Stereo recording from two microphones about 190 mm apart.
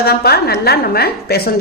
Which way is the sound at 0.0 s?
55° left (ahead or behind).